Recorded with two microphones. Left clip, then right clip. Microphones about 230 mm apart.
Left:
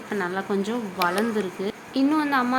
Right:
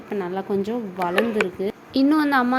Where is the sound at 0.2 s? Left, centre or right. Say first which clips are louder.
Right 1 dB; centre.